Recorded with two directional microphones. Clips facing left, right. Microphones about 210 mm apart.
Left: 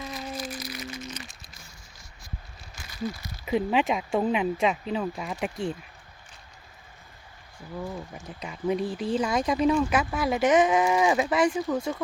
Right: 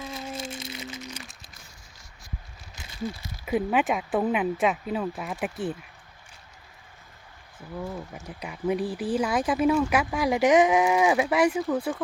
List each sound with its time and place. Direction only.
0.1 s crumpling: 25° right (ahead or behind)
2.8 s a sound: 20° right (ahead or behind)
3.4 s speech: 5° right (ahead or behind)
7.8 s speech: 5° right (ahead or behind)